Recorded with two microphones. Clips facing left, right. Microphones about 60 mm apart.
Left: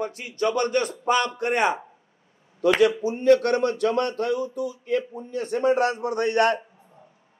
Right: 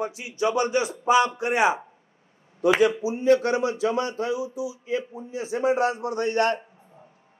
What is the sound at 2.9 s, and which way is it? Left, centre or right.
A man's voice, centre.